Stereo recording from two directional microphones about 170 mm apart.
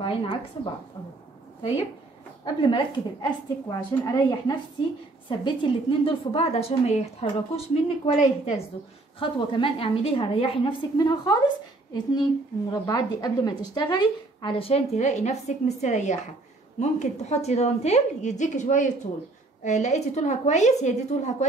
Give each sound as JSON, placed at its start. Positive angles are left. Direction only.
{"t": 0.0, "sound": "a woman's voice", "side_deg": 30}
{"t": 2.4, "sound": "a woman's voice", "side_deg": 25}